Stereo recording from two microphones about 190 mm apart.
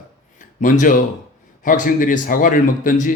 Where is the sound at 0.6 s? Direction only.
45° left (ahead or behind).